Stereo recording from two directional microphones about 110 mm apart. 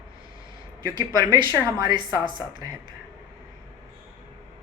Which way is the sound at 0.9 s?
45° right (ahead or behind).